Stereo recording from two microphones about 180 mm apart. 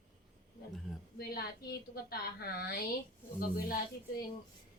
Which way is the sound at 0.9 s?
5° right (ahead or behind).